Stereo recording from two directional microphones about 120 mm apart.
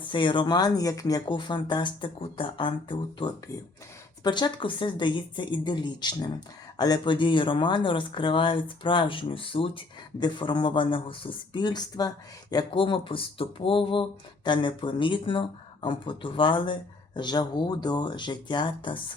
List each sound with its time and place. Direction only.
0.1 s speech: 40° left (ahead or behind)